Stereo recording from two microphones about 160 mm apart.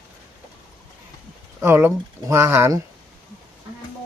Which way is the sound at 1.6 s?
15° right (ahead or behind).